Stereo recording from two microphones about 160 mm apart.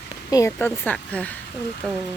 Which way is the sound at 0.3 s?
20° left (ahead or behind).